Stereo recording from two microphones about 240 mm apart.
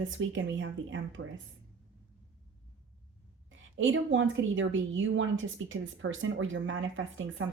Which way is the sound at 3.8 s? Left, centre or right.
Right.